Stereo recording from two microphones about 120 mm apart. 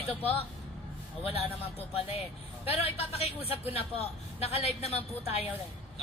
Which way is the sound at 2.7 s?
60° left (ahead or behind).